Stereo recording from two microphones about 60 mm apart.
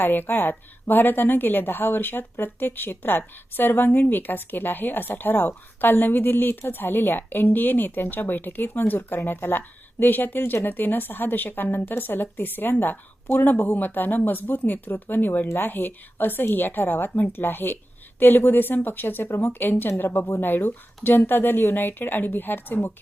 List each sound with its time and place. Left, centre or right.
0.0 s a woman's voice: left